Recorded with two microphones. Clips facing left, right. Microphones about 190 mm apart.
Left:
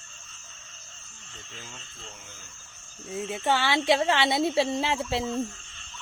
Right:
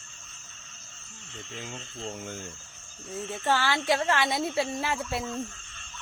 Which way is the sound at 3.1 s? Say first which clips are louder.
Left 1 dB; 15° left (ahead or behind).